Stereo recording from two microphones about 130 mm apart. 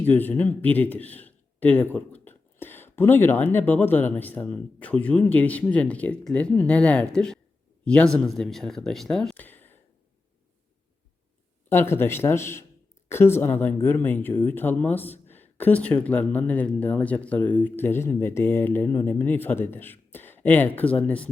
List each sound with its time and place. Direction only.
0.0 s speech: 15° left (ahead or behind)
9.3 s a sound: 15° left (ahead or behind)
11.7 s speech: 15° left (ahead or behind)